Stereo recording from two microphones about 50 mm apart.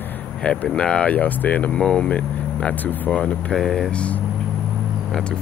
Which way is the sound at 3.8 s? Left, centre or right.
Left.